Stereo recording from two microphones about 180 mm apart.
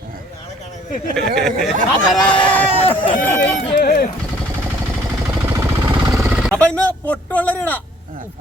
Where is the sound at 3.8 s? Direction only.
55° left (ahead or behind).